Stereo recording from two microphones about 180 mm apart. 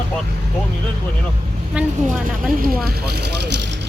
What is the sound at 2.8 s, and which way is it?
Vehicle, 60° right (ahead or behind).